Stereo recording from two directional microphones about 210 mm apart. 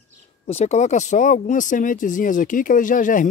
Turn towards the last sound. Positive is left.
turn(degrees=40)  # may be behind; listen again after turning